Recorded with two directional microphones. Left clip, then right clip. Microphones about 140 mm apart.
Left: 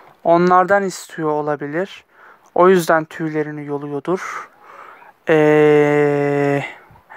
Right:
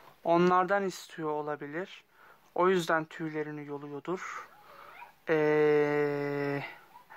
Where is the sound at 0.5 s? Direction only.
35° left (ahead or behind).